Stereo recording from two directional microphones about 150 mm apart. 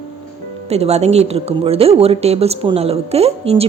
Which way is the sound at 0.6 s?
45° right (ahead or behind).